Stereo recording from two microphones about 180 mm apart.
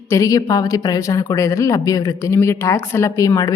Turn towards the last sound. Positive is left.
turn(degrees=20)  # may be behind; listen again after turning